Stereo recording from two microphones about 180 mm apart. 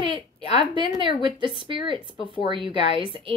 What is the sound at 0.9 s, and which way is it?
A woman's voice, 30° right (ahead or behind).